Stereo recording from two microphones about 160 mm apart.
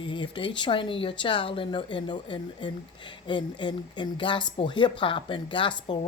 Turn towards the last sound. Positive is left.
turn(degrees=30)  # may be behind; listen again after turning